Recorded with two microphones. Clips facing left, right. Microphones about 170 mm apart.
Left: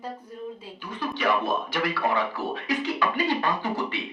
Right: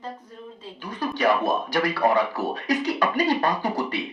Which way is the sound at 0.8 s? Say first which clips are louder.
Right 4 dB; 40° right (ahead or behind).